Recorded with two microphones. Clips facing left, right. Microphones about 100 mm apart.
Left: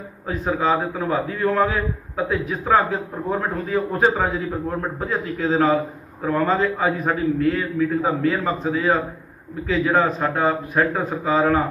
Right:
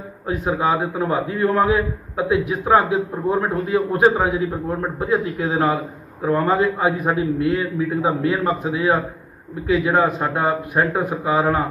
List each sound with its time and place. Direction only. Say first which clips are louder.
0.3 s a man's voice: right 1 dB; 15° right (ahead or behind)